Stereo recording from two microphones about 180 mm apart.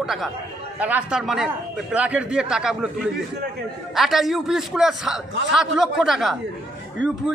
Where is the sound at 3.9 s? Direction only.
Centre (ahead or behind).